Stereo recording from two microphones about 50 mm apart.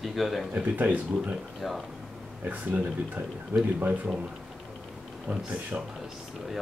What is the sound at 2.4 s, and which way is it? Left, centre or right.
Speech, right.